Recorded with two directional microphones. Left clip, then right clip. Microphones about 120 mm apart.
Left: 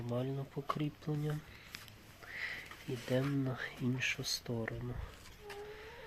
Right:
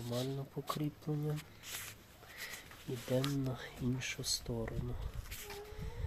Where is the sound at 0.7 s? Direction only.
Centre (ahead or behind).